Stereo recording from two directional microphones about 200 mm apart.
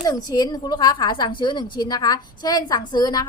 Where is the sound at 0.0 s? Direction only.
20° left (ahead or behind).